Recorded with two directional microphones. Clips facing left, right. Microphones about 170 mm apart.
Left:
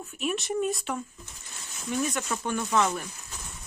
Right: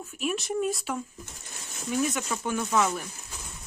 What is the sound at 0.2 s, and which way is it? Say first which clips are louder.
Speech: even; centre (ahead or behind).